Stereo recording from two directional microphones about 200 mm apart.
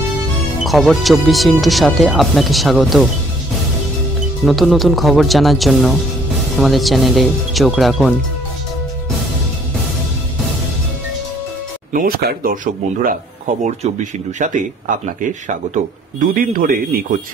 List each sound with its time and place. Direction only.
0.7 s speech: centre (ahead or behind)
4.5 s speech: centre (ahead or behind)
11.9 s speech: 45° right (ahead or behind)
13.7 s speech: 35° right (ahead or behind)